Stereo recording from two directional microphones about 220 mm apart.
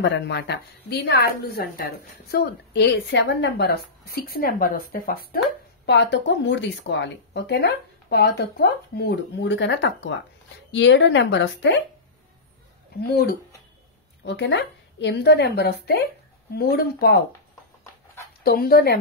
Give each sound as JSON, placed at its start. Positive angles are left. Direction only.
{"t": 0.0, "sound": "a woman's voice", "side_deg": 50}
{"t": 13.0, "sound": "a woman's voice", "side_deg": 45}
{"t": 18.4, "sound": "a woman's voice", "side_deg": 45}